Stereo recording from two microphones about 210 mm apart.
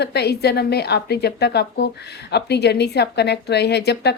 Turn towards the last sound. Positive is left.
turn(degrees=50)  # may be behind; listen again after turning